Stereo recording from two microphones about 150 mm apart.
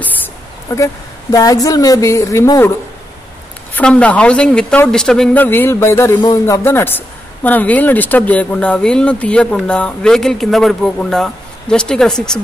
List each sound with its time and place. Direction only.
0.7 s a woman's voice: 20° left (ahead or behind)
3.7 s a woman's voice: 10° left (ahead or behind)